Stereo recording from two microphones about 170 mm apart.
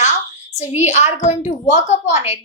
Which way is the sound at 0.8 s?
40° left (ahead or behind).